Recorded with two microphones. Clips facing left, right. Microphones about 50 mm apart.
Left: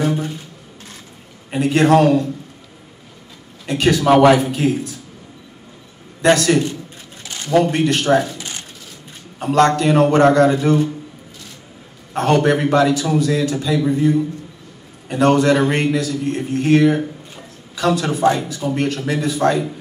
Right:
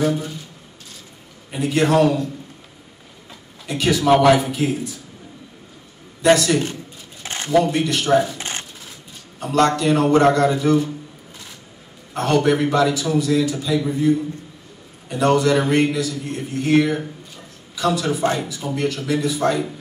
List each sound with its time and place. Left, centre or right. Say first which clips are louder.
0.0 s a man's voice: left 1 dB; left
1.5 s a man's voice: left 4 dB; left
3.6 s a man's voice: left 3 dB; left
6.3 s a man's voice: left 2 dB; left
7.2 s a sound: right 2 dB; right
7.6 s a man's voice: left 3 dB; left
8.4 s shuffling cards: right 2 dB; right
9.4 s a man's voice: left 3 dB; left
12.1 s a man's voice: left 2 dB; left